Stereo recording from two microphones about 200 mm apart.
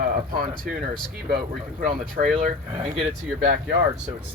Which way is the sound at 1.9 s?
40° right (ahead or behind).